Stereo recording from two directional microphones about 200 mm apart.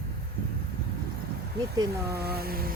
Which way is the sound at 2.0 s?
50° right (ahead or behind).